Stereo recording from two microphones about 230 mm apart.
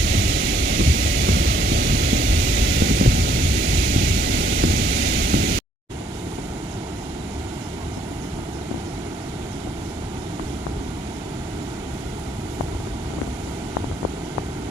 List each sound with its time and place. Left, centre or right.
0.0 s vehicle: right